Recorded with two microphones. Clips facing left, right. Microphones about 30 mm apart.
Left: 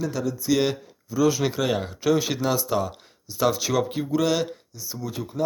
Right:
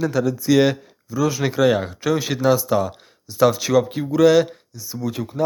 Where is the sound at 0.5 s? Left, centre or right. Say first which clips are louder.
Right 6 dB; right.